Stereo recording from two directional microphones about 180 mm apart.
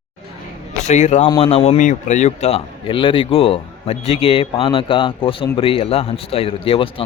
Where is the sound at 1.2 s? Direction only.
30° left (ahead or behind).